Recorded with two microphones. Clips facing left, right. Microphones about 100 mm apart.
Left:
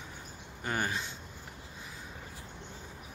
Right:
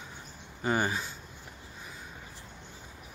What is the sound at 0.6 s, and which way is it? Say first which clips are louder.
Speech: right 5 dB; 10° right (ahead or behind).